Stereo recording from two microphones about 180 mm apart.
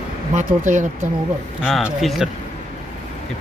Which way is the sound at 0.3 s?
45° right (ahead or behind).